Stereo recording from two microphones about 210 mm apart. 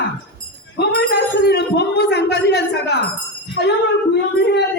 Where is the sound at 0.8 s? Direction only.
50° left (ahead or behind).